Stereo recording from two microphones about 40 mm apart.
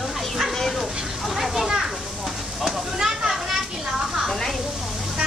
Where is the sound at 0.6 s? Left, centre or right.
Centre.